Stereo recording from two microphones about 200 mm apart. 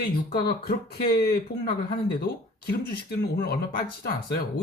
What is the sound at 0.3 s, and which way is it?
Speech, 50° left (ahead or behind).